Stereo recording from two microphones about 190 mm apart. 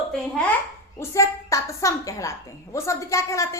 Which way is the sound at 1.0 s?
15° left (ahead or behind).